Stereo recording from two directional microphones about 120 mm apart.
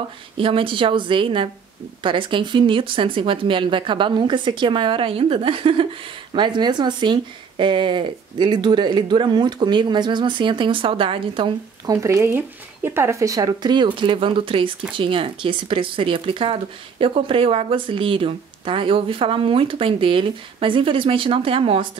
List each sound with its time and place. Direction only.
0.4 s speech: 45° right (ahead or behind)
11.8 s speech: 30° right (ahead or behind); by 21.8 s 50° right (ahead or behind)